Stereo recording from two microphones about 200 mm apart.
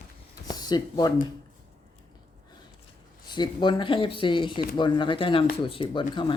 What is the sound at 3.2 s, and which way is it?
Speech, 20° left (ahead or behind).